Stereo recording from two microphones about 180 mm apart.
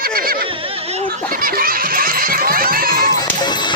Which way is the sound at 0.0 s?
55° right (ahead or behind).